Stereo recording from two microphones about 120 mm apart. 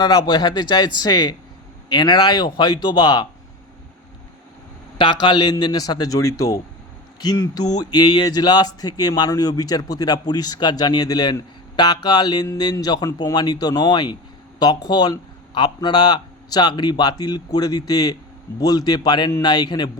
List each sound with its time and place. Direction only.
0.0 s a man's voice: 40° left (ahead or behind)
4.9 s a man's voice: 40° left (ahead or behind)